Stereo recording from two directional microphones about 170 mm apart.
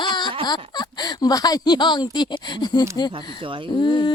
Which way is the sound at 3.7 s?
25° left (ahead or behind).